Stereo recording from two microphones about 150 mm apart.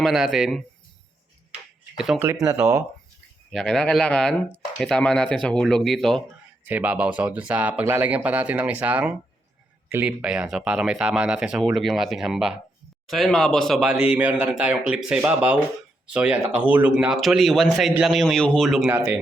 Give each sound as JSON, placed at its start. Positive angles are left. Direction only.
{"t": 0.0, "sound": "a man's voice", "side_deg": 0}
{"t": 1.5, "sound": "a sound", "side_deg": -5}
{"t": 2.2, "sound": "speech", "side_deg": -15}
{"t": 3.5, "sound": "a man's voice", "side_deg": 5}
{"t": 6.7, "sound": "a man's voice", "side_deg": -10}